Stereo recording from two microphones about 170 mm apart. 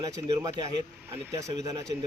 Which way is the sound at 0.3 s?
20° right (ahead or behind).